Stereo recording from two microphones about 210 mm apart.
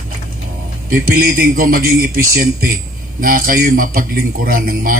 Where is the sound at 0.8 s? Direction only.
45° right (ahead or behind).